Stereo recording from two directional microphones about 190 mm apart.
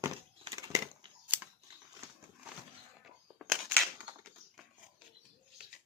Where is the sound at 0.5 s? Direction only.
15° right (ahead or behind).